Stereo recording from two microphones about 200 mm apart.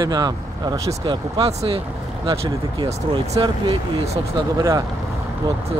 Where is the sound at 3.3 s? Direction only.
25° right (ahead or behind).